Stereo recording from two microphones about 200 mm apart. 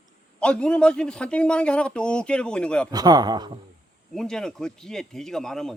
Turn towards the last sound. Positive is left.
turn(degrees=0)  # may be behind; listen again after turning